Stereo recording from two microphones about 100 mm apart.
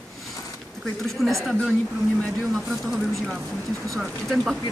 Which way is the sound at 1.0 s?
Centre (ahead or behind).